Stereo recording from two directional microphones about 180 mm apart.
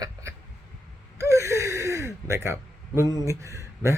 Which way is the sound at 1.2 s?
15° right (ahead or behind).